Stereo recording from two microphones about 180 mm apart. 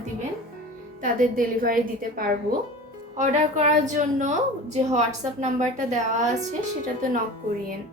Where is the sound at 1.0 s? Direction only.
50° right (ahead or behind).